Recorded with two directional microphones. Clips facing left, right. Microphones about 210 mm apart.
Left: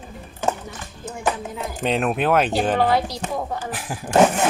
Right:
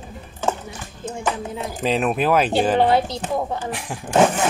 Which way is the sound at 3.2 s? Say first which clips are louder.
Right 3 dB; centre (ahead or behind).